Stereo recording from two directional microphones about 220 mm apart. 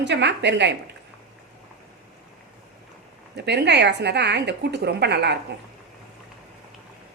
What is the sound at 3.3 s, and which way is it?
A woman's voice, 50° right (ahead or behind).